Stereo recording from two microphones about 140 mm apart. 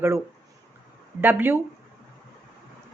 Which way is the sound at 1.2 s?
15° right (ahead or behind).